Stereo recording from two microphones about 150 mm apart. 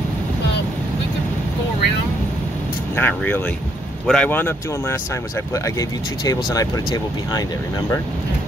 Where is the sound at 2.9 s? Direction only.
10° left (ahead or behind); by 7.4 s 25° left (ahead or behind).